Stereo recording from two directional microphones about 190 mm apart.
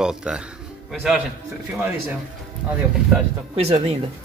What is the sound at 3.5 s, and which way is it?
Speech, 35° right (ahead or behind).